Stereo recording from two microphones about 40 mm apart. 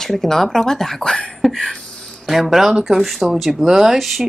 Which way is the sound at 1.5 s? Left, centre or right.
Centre.